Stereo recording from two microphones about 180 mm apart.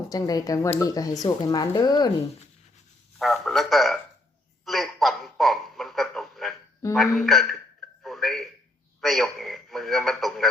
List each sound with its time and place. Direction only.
0.1 s speech: 20° left (ahead or behind)
3.2 s a man's voice: centre (ahead or behind)
4.6 s a sound: centre (ahead or behind)
6.9 s a man's voice: centre (ahead or behind)
8.0 s a sound: centre (ahead or behind)
9.0 s speech: centre (ahead or behind)